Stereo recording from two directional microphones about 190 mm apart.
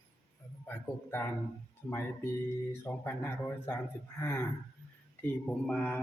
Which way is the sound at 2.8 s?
10° left (ahead or behind).